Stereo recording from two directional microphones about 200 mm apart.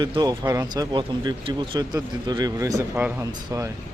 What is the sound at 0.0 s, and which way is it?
Speech, 20° right (ahead or behind).